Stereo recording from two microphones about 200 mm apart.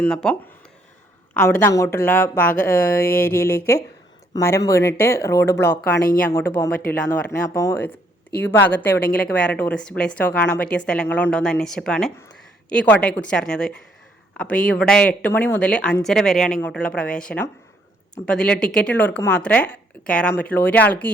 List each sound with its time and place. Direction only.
0.0 s a woman's voice: 5° left (ahead or behind)